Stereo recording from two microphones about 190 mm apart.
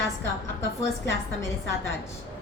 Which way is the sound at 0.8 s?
15° left (ahead or behind).